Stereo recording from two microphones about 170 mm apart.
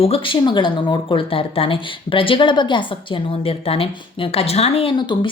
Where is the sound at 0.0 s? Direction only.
30° left (ahead or behind).